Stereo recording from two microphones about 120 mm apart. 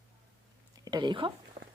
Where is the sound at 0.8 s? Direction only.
35° right (ahead or behind).